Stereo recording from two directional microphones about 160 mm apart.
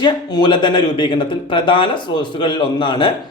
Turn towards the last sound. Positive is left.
turn(degrees=30)  # may be behind; listen again after turning